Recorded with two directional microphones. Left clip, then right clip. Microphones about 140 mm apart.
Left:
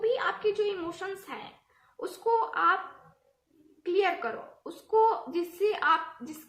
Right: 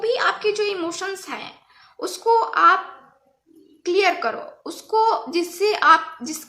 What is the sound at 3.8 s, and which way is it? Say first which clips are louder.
Speech: right 8 dB; 25° right (ahead or behind).